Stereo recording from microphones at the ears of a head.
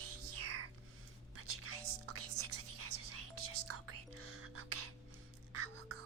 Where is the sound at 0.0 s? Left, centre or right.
Right.